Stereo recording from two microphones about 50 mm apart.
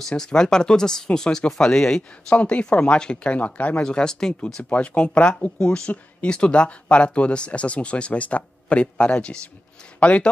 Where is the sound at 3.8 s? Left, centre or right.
Centre.